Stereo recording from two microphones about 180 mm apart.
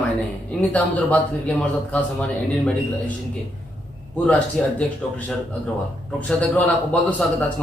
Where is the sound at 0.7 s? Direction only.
5° left (ahead or behind).